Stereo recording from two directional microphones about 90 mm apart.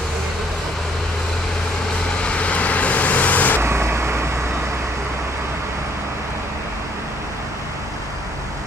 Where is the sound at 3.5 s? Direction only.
30° right (ahead or behind).